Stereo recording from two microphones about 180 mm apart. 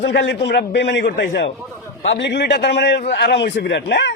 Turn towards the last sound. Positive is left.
turn(degrees=75)  # may be behind; listen again after turning